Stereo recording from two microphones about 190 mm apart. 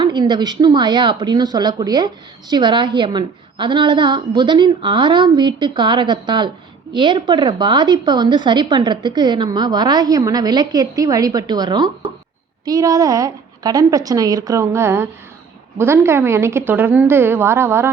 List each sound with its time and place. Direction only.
0.0 s a woman's voice: 20° right (ahead or behind)